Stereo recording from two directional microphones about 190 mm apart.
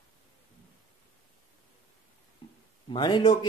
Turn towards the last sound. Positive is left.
turn(degrees=25)  # may be behind; listen again after turning